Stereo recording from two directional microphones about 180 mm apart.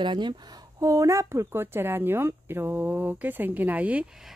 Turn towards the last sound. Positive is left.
turn(degrees=-5)  # may be behind; listen again after turning